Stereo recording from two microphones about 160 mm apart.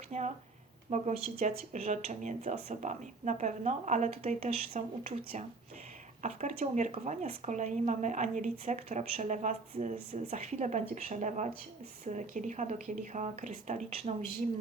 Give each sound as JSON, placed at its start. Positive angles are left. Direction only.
{"t": 0.1, "sound": "speech", "side_deg": -50}